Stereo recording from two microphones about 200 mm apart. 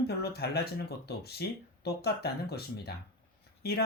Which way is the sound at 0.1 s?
50° left (ahead or behind).